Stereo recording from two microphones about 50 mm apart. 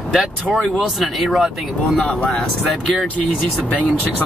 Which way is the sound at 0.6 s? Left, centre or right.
Centre.